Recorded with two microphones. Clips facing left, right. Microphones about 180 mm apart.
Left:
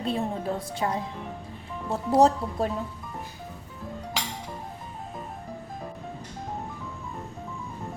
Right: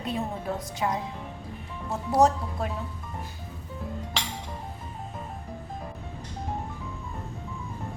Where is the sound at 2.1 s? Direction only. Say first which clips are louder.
Left 2 dB; 35° left (ahead or behind).